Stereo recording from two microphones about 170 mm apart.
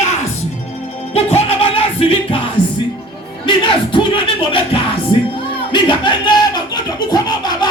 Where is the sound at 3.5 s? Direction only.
30° left (ahead or behind).